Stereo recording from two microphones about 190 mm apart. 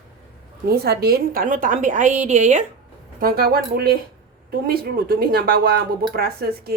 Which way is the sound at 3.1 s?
50° right (ahead or behind).